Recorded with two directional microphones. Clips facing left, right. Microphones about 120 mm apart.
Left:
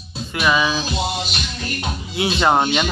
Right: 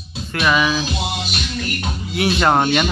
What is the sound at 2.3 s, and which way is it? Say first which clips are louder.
Fowl: even; 10° left (ahead or behind).